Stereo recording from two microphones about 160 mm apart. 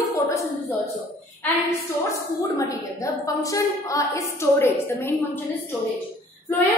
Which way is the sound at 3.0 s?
20° left (ahead or behind).